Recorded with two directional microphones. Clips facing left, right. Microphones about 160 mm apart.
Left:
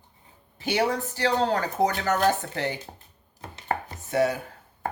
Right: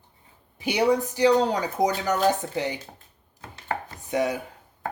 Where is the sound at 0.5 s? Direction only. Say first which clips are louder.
Right 3 dB; 15° right (ahead or behind).